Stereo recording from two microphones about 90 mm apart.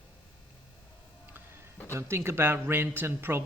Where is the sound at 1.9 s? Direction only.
30° right (ahead or behind).